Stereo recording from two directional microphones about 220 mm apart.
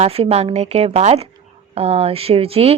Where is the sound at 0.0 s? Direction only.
25° right (ahead or behind).